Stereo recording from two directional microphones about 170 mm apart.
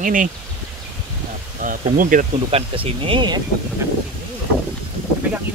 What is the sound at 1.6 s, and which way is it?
Speech, 50° right (ahead or behind).